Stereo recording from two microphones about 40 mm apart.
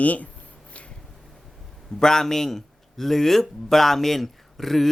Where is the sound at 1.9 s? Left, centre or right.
Centre.